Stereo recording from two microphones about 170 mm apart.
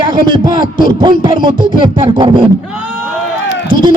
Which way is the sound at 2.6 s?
10° right (ahead or behind).